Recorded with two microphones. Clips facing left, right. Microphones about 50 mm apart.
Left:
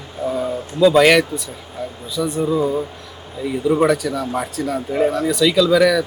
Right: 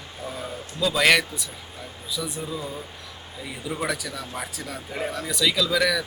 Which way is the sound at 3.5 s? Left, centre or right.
Centre.